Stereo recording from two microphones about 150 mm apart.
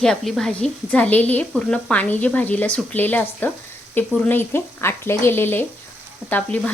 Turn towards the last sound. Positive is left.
turn(degrees=10)  # may be behind; listen again after turning